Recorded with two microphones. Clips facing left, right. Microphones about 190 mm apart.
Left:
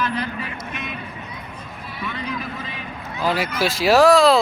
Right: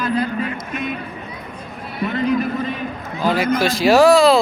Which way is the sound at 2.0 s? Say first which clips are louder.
Right 11 dB; 50° right (ahead or behind).